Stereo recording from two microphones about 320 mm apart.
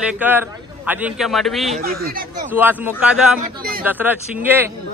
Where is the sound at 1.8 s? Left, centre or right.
Right.